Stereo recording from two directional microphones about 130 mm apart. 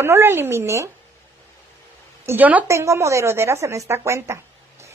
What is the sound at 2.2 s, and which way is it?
A woman's voice, 15° right (ahead or behind).